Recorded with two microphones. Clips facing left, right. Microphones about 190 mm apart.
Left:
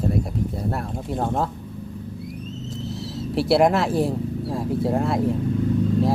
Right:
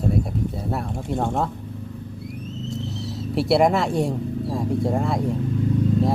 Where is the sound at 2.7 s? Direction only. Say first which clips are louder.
Right 1 dB; centre (ahead or behind).